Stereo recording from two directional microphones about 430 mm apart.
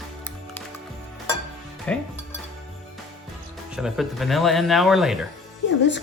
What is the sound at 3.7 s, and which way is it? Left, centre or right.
Speech, centre.